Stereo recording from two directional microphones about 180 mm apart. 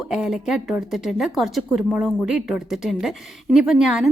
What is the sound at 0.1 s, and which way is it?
Speech, centre (ahead or behind).